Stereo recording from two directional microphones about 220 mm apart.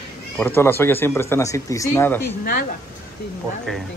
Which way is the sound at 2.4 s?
40° left (ahead or behind).